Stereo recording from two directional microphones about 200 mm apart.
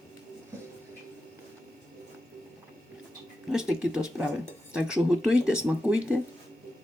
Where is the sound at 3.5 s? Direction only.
5° right (ahead or behind).